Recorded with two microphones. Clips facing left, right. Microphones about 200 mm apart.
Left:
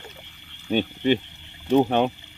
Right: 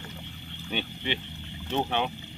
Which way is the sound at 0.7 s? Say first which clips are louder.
Left 11 dB; 45° left (ahead or behind).